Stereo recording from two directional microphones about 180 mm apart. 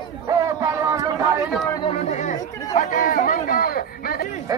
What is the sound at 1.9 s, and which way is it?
Chatter, 40° left (ahead or behind).